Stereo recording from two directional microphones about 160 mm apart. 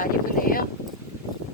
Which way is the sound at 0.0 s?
65° left (ahead or behind).